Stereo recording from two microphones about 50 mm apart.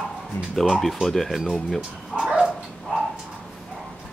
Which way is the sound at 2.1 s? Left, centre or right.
Centre.